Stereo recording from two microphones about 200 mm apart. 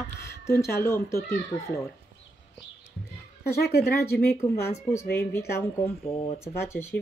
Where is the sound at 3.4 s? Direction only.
50° left (ahead or behind).